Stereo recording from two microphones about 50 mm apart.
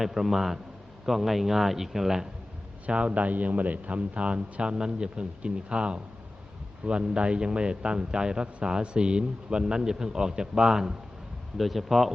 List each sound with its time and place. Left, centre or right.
0.0 s speech: centre
2.8 s a man's voice: right
11.5 s speech: centre